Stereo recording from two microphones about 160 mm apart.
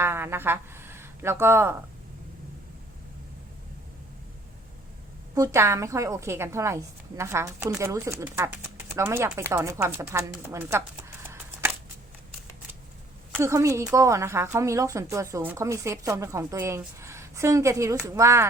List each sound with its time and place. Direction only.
0.0 s a sound: 15° right (ahead or behind)
5.3 s a woman's voice: 20° right (ahead or behind)
13.3 s a woman's voice: 20° right (ahead or behind)